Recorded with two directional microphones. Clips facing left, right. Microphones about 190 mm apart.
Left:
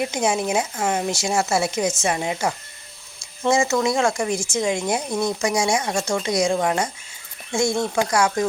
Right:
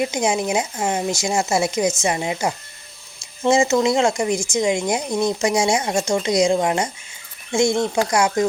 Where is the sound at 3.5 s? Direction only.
25° right (ahead or behind).